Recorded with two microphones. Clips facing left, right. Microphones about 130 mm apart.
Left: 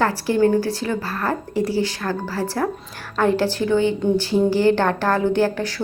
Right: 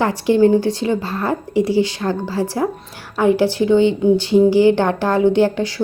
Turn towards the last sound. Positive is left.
turn(degrees=-15)  # may be behind; listen again after turning